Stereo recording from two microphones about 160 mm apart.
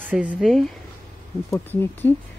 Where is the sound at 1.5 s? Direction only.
15° left (ahead or behind).